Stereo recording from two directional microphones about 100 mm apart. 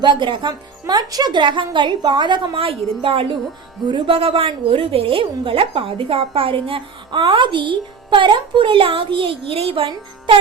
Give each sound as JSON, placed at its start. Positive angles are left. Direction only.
{"t": 0.0, "sound": "speech", "side_deg": -50}
{"t": 3.8, "sound": "a woman's voice", "side_deg": -55}